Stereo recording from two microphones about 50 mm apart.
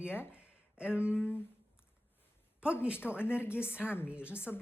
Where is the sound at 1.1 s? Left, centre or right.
Left.